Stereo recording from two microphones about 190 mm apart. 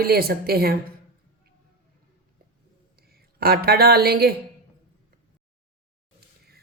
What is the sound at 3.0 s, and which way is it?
Speech, 55° right (ahead or behind).